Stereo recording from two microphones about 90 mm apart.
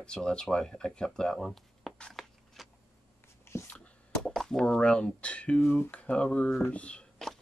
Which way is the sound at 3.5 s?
30° left (ahead or behind).